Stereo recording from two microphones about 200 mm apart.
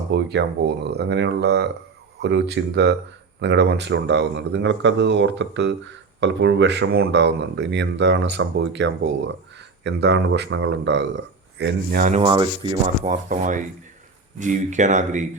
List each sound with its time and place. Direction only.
0.1 s speech: 60° right (ahead or behind); by 12.2 s 45° right (ahead or behind)
12.2 s speech: 25° right (ahead or behind)
13.1 s speech: 40° right (ahead or behind)